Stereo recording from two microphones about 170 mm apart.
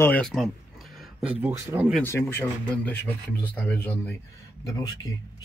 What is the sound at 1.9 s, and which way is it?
Speech, 15° left (ahead or behind).